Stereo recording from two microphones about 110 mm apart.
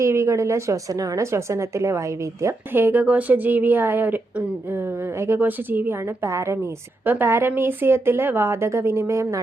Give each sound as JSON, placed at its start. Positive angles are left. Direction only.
{"t": 0.0, "sound": "speech", "side_deg": -25}
{"t": 6.2, "sound": "speech", "side_deg": -25}